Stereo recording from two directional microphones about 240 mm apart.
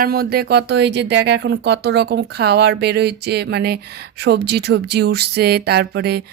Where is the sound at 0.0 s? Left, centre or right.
Right.